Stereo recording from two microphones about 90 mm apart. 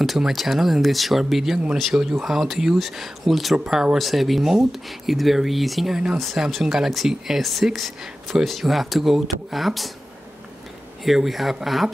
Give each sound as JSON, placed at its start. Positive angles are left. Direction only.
{"t": 0.0, "sound": "speech", "side_deg": 0}
{"t": 11.1, "sound": "speech", "side_deg": 0}